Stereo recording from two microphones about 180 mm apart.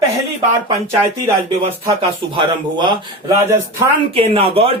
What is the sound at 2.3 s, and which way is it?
Speech, 25° right (ahead or behind).